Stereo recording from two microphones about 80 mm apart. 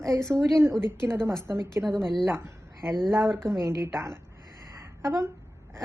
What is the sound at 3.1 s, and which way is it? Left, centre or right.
Speech, right.